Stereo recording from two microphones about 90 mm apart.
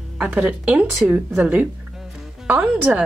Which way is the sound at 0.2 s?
10° right (ahead or behind).